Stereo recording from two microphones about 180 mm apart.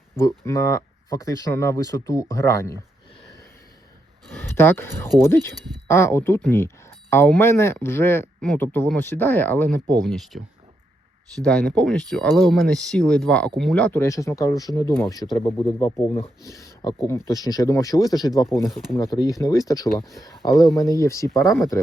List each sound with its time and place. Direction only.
0.2 s speech: 15° left (ahead or behind)
4.3 s speech: 10° left (ahead or behind)
11.4 s speech: 5° left (ahead or behind)
15.4 s speech: 30° left (ahead or behind)
15.8 s speech: 15° left (ahead or behind)
18.4 s speech: centre (ahead or behind)
18.9 s speech: 20° left (ahead or behind)